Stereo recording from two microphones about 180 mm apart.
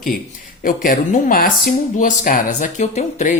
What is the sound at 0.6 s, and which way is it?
Speech, 50° left (ahead or behind).